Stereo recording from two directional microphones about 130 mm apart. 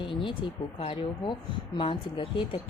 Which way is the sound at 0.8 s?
45° left (ahead or behind).